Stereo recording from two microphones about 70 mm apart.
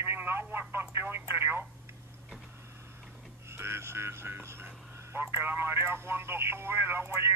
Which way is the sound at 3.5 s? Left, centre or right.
Right.